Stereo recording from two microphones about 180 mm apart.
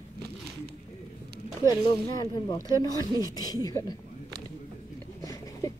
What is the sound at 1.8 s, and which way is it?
A woman's voice, 25° left (ahead or behind).